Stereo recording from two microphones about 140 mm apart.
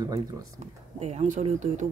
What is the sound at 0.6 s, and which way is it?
Speech, 50° right (ahead or behind).